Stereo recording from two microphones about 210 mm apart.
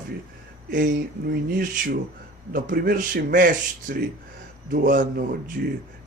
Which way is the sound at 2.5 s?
40° right (ahead or behind).